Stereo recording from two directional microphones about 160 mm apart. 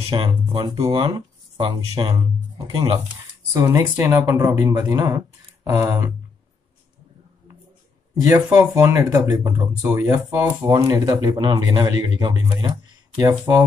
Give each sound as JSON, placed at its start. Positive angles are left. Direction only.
{"t": 0.1, "sound": "speech", "side_deg": -30}
{"t": 3.5, "sound": "speech", "side_deg": -15}
{"t": 8.2, "sound": "speech", "side_deg": -20}